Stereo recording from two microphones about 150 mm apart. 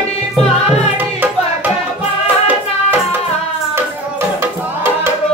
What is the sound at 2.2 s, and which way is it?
Music, 10° right (ahead or behind).